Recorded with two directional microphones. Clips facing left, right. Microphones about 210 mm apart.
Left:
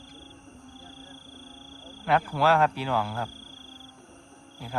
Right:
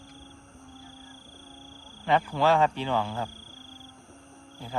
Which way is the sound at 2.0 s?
10° left (ahead or behind).